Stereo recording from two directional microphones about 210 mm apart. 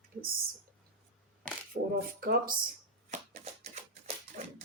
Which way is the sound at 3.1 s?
30° right (ahead or behind).